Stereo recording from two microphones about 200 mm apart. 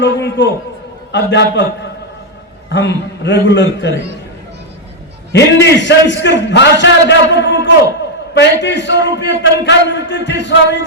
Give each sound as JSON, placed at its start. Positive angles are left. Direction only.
{"t": 0.0, "sound": "speech", "side_deg": 60}
{"t": 5.3, "sound": "speech", "side_deg": 60}